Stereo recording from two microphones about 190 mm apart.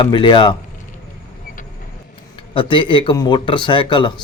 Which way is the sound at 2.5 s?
25° left (ahead or behind).